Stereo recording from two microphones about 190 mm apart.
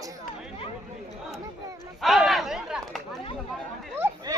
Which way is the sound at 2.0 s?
Centre (ahead or behind).